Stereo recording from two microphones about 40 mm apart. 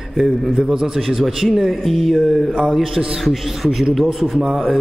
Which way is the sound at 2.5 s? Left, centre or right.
Centre.